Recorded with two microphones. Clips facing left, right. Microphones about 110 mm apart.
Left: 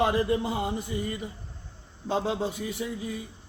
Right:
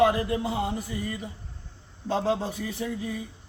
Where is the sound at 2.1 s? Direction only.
15° left (ahead or behind).